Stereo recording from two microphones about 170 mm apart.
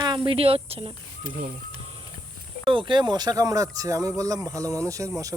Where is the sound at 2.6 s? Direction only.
30° right (ahead or behind).